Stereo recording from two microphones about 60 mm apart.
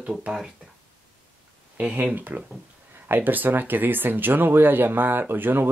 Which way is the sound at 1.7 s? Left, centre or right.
Right.